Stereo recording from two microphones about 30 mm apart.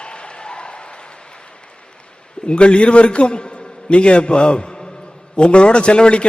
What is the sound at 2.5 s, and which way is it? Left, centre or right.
A man's voice, left.